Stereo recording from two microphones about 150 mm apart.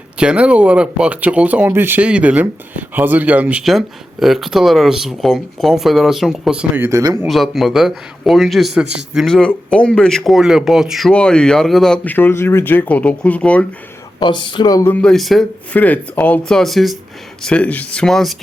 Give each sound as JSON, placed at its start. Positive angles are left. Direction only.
{"t": 0.2, "sound": "speech", "side_deg": -5}
{"t": 7.3, "sound": "a man's voice", "side_deg": 0}
{"t": 14.2, "sound": "speech", "side_deg": 30}
{"t": 15.0, "sound": "a man's voice", "side_deg": 0}